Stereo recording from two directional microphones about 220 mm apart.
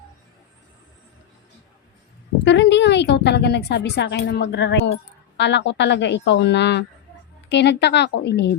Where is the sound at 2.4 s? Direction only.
55° left (ahead or behind).